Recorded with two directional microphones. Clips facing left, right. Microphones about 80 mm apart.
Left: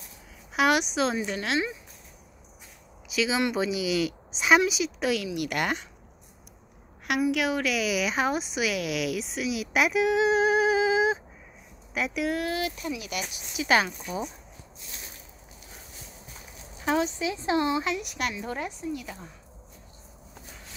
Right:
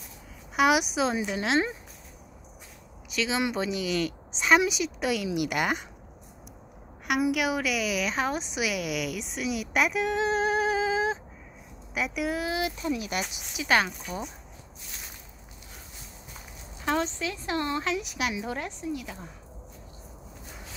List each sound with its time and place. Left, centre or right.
0.6 s speech: centre
3.1 s speech: centre
5.3 s speech: centre
7.2 s speech: centre
11.9 s speech: centre
12.5 s speech: right
12.8 s speech: right
13.6 s speech: centre
16.8 s speech: centre
17.8 s speech: centre